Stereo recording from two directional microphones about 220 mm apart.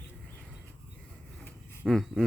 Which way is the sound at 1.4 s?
5° left (ahead or behind).